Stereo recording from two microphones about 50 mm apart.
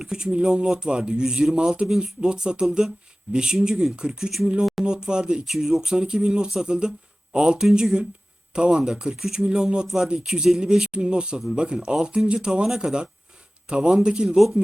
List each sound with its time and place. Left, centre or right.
0.0 s speech: centre
14.3 s speech: centre